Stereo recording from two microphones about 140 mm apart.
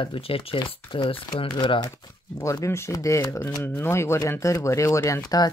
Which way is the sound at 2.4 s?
20° left (ahead or behind).